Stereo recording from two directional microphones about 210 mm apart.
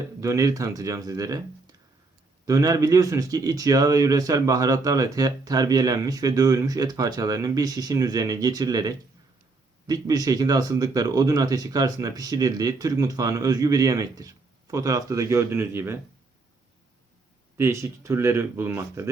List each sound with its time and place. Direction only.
0.2 s speech: 15° right (ahead or behind)
17.6 s speech: 15° right (ahead or behind)